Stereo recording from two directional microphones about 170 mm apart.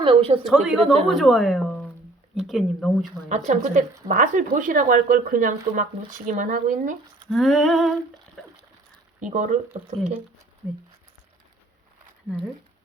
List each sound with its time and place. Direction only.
0.0 s speech: 35° right (ahead or behind)
0.4 s speech: 5° right (ahead or behind)
3.2 s speech: 45° right (ahead or behind)
7.3 s speech: centre (ahead or behind)
9.2 s speech: 45° right (ahead or behind)